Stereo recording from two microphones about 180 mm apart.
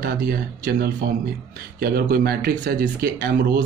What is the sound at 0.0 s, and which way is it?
Speech, 60° right (ahead or behind).